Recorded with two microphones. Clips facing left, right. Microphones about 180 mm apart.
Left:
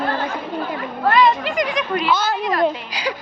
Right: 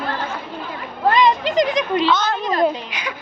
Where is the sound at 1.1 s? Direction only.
20° right (ahead or behind).